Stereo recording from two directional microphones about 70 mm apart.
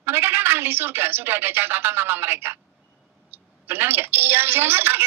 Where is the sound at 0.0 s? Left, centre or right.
Right.